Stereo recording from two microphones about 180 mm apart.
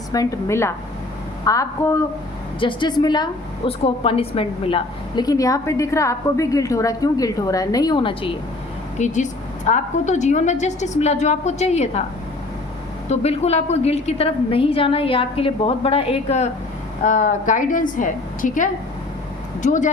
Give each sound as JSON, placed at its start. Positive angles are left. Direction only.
{"t": 0.1, "sound": "a woman's voice", "side_deg": 20}
{"t": 2.6, "sound": "a woman's voice", "side_deg": 25}
{"t": 9.0, "sound": "a woman's voice", "side_deg": 40}
{"t": 13.1, "sound": "a woman's voice", "side_deg": 35}